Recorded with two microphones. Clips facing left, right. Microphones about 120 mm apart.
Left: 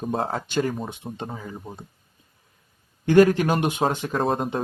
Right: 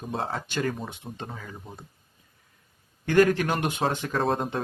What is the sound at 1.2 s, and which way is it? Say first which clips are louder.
Speech: left 5 dB; 20° left (ahead or behind).